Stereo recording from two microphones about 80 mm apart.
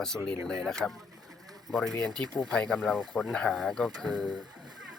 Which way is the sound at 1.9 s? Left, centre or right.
Centre.